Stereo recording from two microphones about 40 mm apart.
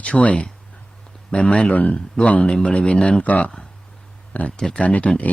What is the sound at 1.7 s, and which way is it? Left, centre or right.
Speech, left.